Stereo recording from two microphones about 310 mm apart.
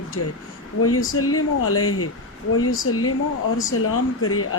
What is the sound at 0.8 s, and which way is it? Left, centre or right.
Speech, left.